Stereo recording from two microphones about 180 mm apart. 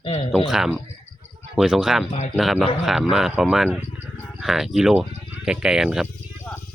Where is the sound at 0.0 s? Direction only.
30° left (ahead or behind).